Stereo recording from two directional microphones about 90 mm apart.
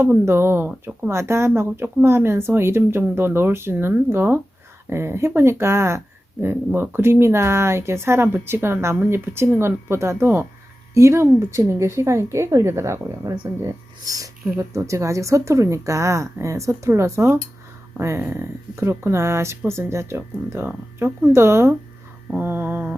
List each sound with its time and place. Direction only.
0.0 s speech: 25° right (ahead or behind)
0.7 s speech: 15° right (ahead or behind)
1.1 s speech: 30° right (ahead or behind)